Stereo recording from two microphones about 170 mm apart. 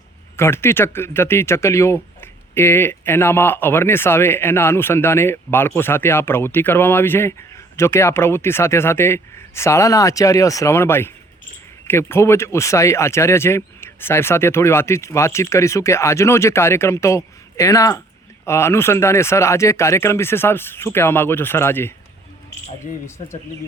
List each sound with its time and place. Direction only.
0.3 s speech: 15° left (ahead or behind)
23.0 s speech: 15° left (ahead or behind)